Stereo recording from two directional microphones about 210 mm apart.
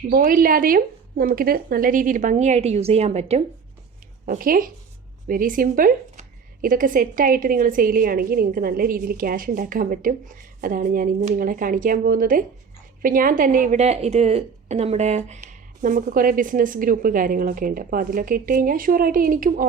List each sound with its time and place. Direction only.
0.1 s speech: 45° right (ahead or behind)